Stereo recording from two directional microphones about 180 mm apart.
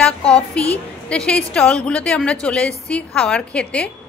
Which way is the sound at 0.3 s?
5° left (ahead or behind).